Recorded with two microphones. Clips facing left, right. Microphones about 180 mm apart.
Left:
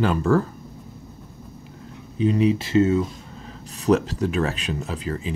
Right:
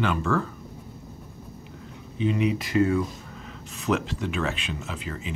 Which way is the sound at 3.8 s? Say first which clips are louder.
Left 7 dB; 40° left (ahead or behind).